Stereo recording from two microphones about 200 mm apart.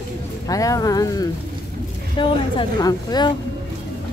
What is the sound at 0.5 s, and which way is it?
A woman's voice, 15° left (ahead or behind).